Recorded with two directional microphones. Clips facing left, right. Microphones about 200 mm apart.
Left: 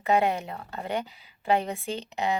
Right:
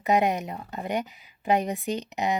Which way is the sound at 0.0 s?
15° right (ahead or behind).